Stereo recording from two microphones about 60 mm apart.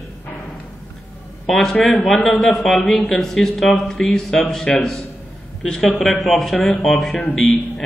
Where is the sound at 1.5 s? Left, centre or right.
Centre.